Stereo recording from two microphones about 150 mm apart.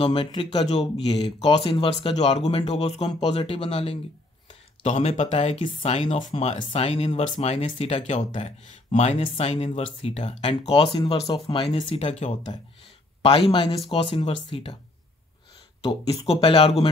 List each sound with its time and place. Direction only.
0.0 s speech: 40° left (ahead or behind)
6.3 s speech: 45° left (ahead or behind)
13.5 s speech: 40° left (ahead or behind)
16.1 s speech: 40° left (ahead or behind)